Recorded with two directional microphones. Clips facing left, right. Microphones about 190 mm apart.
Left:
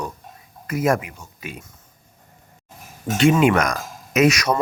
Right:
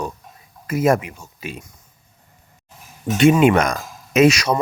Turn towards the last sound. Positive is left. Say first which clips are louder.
# right 3 dB
turn(degrees=-30)  # may be behind; listen again after turning